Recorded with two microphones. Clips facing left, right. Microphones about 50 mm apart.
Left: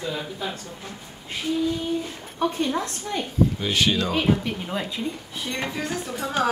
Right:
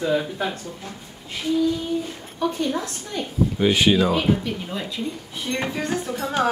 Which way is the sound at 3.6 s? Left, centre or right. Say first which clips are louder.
Right 5 dB; centre.